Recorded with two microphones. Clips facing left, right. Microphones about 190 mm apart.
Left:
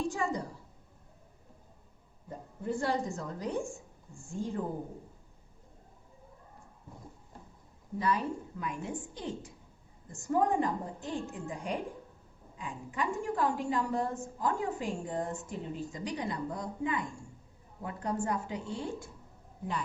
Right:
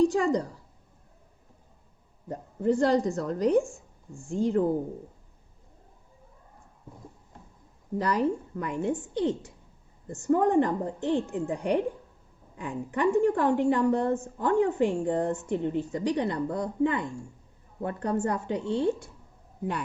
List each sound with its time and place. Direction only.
0.0 s a woman's voice: 75° right (ahead or behind)
2.3 s a woman's voice: 85° right
7.9 s a woman's voice: 75° right (ahead or behind)